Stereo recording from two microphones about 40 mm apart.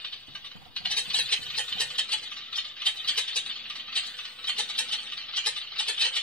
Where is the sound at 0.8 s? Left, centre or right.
Left.